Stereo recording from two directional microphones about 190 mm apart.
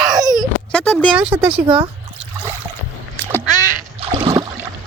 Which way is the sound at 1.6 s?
25° right (ahead or behind).